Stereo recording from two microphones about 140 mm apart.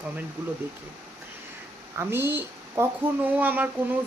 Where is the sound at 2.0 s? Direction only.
20° right (ahead or behind).